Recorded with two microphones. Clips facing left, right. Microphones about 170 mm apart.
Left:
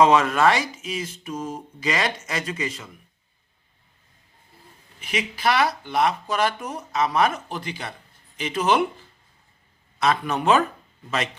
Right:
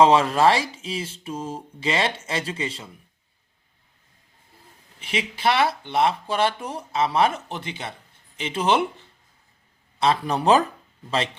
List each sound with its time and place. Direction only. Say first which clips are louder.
0.0 s speech: right 1 dB; 30° right (ahead or behind)
4.9 s speech: even; 30° right (ahead or behind)